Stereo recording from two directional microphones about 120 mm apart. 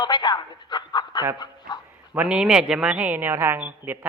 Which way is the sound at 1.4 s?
35° left (ahead or behind).